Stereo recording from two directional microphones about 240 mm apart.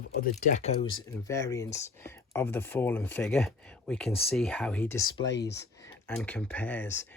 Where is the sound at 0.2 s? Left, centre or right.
Left; by 5.1 s centre.